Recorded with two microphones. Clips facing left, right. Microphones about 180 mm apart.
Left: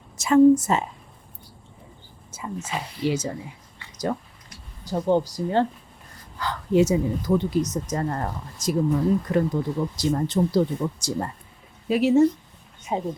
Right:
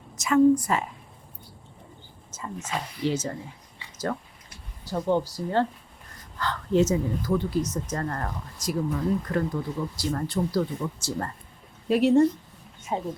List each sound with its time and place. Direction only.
0.2 s speech: 30° left (ahead or behind)
2.3 s speech: 10° left (ahead or behind)
3.9 s a sound: 15° left (ahead or behind)
4.9 s speech: 15° left (ahead or behind)
11.9 s speech: centre (ahead or behind)
12.9 s speech: 20° left (ahead or behind)